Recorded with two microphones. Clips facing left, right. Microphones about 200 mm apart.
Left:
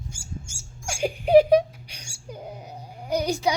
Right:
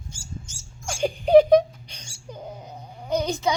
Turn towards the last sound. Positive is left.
turn(degrees=10)  # may be behind; listen again after turning